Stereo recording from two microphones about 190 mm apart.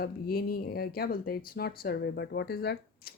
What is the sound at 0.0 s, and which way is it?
A woman's voice, 50° left (ahead or behind).